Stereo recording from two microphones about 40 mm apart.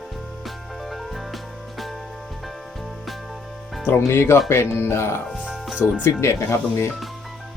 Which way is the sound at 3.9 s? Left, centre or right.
Left.